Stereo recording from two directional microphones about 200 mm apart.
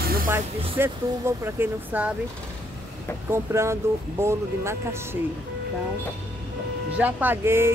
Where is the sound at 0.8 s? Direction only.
10° right (ahead or behind).